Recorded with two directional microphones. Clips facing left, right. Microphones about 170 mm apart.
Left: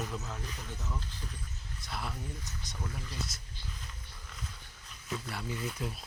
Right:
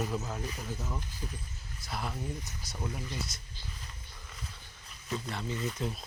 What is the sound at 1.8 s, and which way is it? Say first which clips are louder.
Speech: right 2 dB; centre (ahead or behind).